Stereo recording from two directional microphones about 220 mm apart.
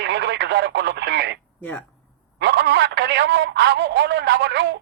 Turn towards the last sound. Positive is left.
turn(degrees=-50)  # may be behind; listen again after turning